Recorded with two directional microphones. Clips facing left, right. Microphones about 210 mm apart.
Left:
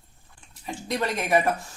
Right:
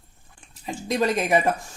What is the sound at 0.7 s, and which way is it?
Speech, 20° right (ahead or behind).